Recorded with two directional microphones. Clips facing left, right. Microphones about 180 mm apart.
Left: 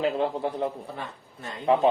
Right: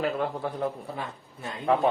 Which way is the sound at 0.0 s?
20° left (ahead or behind).